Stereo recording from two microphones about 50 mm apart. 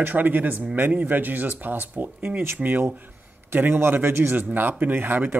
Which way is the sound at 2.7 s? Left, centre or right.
Right.